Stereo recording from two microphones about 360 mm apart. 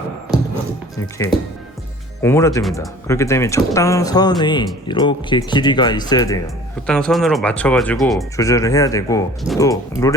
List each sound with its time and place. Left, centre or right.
2.2 s speech: centre